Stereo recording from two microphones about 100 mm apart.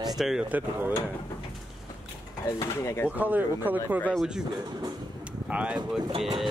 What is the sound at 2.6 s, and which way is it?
Speech, 30° left (ahead or behind).